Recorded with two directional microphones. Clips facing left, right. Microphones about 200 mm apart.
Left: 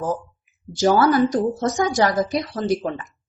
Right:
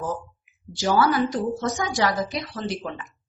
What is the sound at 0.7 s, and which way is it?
A woman's voice, 45° left (ahead or behind).